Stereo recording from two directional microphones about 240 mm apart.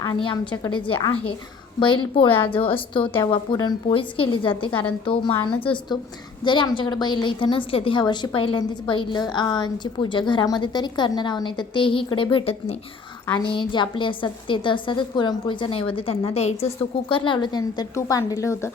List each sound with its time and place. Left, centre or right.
0.0 s a woman's voice: centre